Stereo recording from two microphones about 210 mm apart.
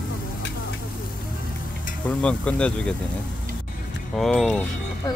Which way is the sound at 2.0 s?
5° left (ahead or behind).